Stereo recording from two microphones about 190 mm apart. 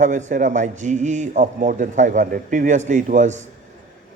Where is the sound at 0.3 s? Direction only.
40° right (ahead or behind).